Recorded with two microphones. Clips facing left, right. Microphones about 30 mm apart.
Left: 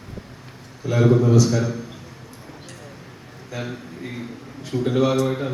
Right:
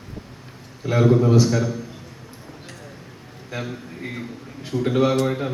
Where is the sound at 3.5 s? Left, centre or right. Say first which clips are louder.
Right 1 dB; right.